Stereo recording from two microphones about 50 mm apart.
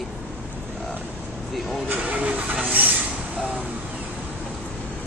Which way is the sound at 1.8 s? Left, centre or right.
Right.